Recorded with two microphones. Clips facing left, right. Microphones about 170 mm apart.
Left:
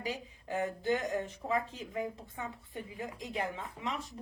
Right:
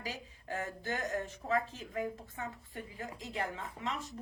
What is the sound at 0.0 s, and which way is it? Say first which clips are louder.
A woman's voice: left 5 dB; 20° left (ahead or behind).